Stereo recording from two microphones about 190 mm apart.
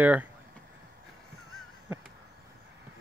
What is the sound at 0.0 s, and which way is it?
Speech, 10° right (ahead or behind).